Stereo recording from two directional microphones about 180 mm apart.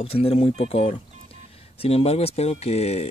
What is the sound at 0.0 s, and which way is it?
Speech, 30° left (ahead or behind).